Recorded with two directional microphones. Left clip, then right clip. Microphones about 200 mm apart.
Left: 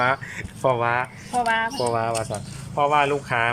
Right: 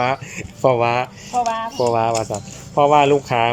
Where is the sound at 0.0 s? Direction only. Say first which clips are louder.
Right 2 dB; 5° right (ahead or behind).